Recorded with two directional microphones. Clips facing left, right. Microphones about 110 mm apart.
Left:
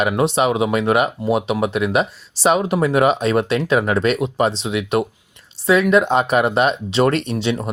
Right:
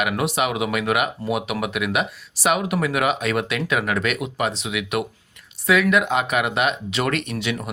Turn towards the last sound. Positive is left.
turn(degrees=30)  # may be behind; listen again after turning